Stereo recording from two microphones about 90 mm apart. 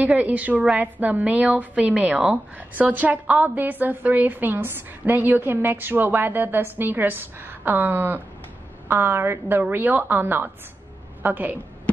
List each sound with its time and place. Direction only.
0.0 s a woman's voice: 15° right (ahead or behind)